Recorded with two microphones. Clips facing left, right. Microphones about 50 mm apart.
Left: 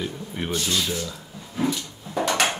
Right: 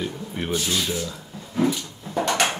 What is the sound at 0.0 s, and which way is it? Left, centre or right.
Speech, centre.